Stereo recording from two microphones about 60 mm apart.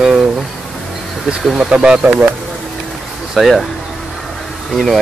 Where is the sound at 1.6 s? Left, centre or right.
Centre.